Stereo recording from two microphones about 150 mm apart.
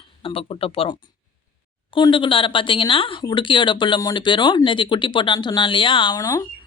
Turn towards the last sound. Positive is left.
turn(degrees=25)  # may be behind; listen again after turning